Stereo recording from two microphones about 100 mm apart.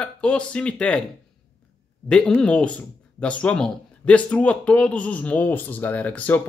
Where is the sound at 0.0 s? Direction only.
10° left (ahead or behind).